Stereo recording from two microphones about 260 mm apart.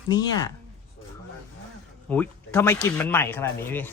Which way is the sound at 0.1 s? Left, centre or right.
Centre.